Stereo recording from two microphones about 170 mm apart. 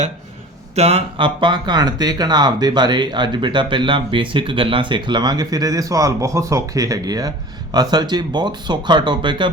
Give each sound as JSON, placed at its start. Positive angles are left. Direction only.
{"t": 0.8, "sound": "speech", "side_deg": -35}